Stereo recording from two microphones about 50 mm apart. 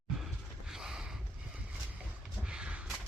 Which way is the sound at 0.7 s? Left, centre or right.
Centre.